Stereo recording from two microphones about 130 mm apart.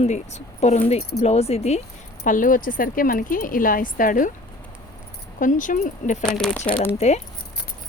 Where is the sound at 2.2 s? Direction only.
90° left.